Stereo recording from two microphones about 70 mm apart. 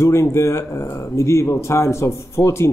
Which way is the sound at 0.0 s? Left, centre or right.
Left.